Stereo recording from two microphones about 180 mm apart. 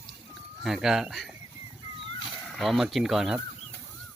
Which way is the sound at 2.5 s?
Centre (ahead or behind).